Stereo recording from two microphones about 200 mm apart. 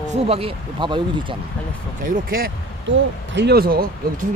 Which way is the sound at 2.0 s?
45° right (ahead or behind).